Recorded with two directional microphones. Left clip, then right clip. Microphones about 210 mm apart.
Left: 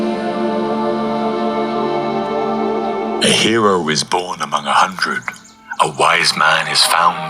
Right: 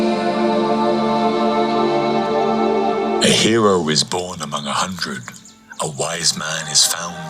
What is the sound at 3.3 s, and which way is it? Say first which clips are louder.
A man's voice: left 2 dB; 25° right (ahead or behind).